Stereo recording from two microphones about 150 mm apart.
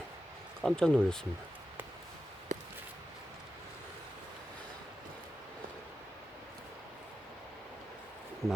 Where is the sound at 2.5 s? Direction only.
55° right (ahead or behind).